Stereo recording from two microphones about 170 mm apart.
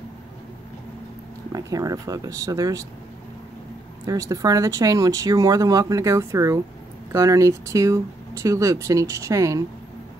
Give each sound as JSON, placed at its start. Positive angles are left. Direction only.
{"t": 1.5, "sound": "speech", "side_deg": -20}
{"t": 4.0, "sound": "speech", "side_deg": -20}